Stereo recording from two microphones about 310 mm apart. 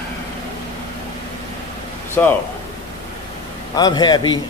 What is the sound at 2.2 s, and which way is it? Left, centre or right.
Speech, centre.